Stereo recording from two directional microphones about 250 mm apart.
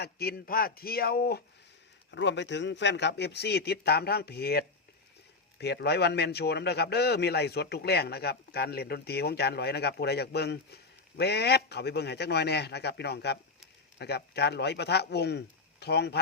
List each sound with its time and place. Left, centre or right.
0.0 s a man's voice: left